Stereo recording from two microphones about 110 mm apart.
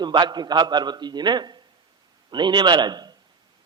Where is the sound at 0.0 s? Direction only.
40° right (ahead or behind).